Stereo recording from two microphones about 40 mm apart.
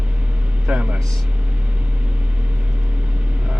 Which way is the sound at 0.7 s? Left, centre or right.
Right.